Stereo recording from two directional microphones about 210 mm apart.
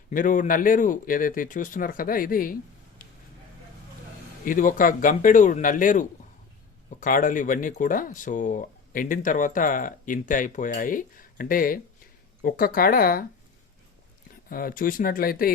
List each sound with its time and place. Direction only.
0.1 s speech: 40° left (ahead or behind)
4.4 s speech: 40° left (ahead or behind)
14.5 s speech: 40° left (ahead or behind)